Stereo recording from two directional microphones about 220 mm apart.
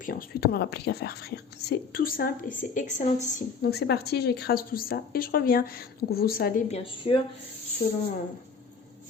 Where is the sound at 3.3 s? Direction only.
45° left (ahead or behind).